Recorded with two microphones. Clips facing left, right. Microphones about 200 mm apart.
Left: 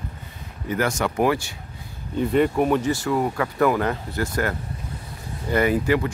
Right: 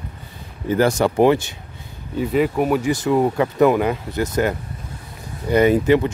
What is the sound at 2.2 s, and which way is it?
Speech, 5° right (ahead or behind).